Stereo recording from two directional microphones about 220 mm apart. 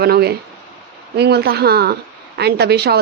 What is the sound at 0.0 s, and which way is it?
Speech, 45° right (ahead or behind).